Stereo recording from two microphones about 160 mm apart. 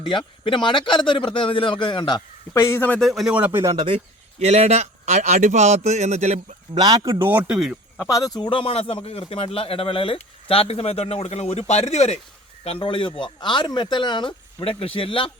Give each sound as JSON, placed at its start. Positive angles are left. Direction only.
{"t": 0.0, "sound": "speech", "side_deg": 30}
{"t": 2.5, "sound": "speech", "side_deg": 15}
{"t": 3.8, "sound": "speech", "side_deg": -40}
{"t": 7.2, "sound": "speech", "side_deg": -10}
{"t": 7.9, "sound": "speech", "side_deg": 20}